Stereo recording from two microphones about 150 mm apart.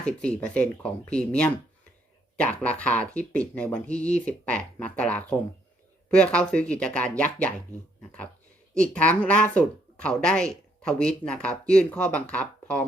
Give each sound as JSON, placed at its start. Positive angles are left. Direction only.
{"t": 0.2, "sound": "speech", "side_deg": 10}
{"t": 8.7, "sound": "speech", "side_deg": 5}